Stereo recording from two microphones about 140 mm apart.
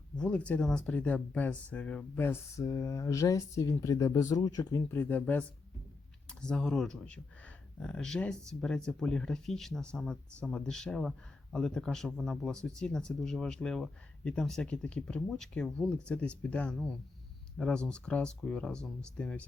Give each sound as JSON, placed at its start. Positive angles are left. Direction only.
{"t": 0.2, "sound": "speech", "side_deg": 10}
{"t": 4.9, "sound": "speech", "side_deg": 15}